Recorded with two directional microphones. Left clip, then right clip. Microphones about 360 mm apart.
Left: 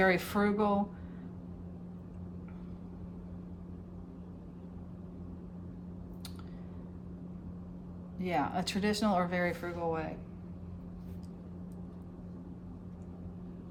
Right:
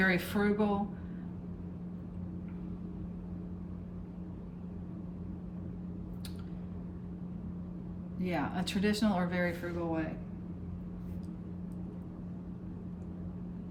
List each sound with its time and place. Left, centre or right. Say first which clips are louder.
0.0 s speech: left 2 dB; centre
8.2 s speech: left 3 dB; centre